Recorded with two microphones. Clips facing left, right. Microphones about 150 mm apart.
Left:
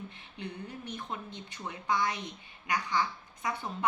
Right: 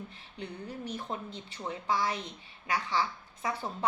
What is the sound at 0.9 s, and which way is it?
A woman's voice, 30° right (ahead or behind).